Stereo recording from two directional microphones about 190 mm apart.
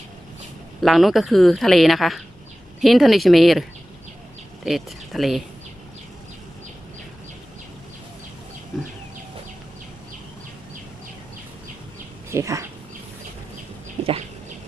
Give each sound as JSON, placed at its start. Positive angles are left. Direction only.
{"t": 0.8, "sound": "a woman's voice", "side_deg": 0}
{"t": 12.3, "sound": "speech", "side_deg": -15}